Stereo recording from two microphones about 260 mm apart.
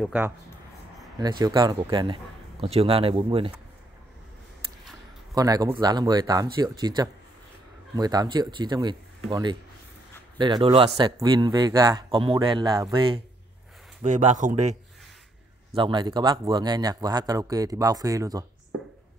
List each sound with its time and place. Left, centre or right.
0.0 s speech: centre
1.4 s speech: centre
5.3 s speech: centre